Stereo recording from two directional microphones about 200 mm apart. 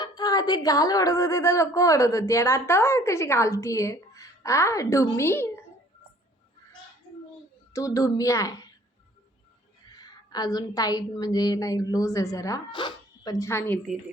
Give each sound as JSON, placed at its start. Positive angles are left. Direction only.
{"t": 0.0, "sound": "a woman's voice", "side_deg": 20}
{"t": 7.7, "sound": "a woman's voice", "side_deg": 15}
{"t": 9.9, "sound": "a woman's voice", "side_deg": 20}